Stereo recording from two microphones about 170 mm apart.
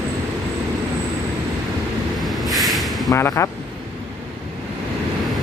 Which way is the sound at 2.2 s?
Centre (ahead or behind).